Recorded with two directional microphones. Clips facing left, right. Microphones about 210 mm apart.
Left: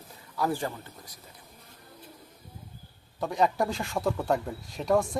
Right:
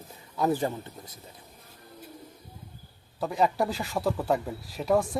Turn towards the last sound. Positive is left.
turn(degrees=-5)  # may be behind; listen again after turning